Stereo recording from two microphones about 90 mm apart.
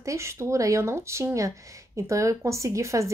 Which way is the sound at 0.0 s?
35° right (ahead or behind).